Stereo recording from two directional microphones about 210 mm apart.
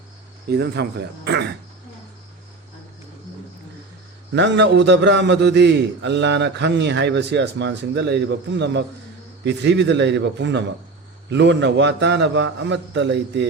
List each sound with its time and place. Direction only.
0.4 s speech: 50° right (ahead or behind)
4.3 s a man's voice: 55° right (ahead or behind)